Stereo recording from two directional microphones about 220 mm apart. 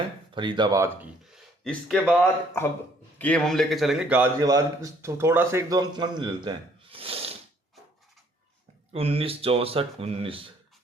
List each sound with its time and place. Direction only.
0.3 s speech: 20° right (ahead or behind)
1.6 s a man's voice: 5° left (ahead or behind); by 6.5 s 20° right (ahead or behind)
6.9 s snort: 25° right (ahead or behind)
8.9 s speech: 25° right (ahead or behind)